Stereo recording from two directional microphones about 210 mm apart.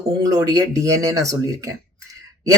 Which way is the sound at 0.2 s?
15° right (ahead or behind).